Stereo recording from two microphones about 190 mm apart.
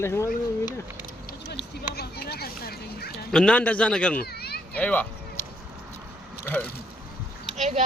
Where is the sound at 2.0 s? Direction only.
55° left (ahead or behind).